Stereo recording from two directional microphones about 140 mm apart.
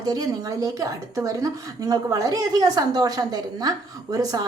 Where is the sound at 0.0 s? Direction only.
25° right (ahead or behind).